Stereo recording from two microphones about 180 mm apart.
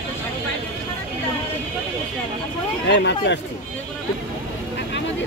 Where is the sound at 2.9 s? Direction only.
75° left (ahead or behind).